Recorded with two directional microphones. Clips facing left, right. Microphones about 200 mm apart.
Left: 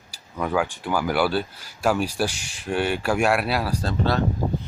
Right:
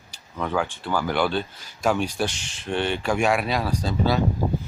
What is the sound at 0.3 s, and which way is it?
Speech, 5° left (ahead or behind).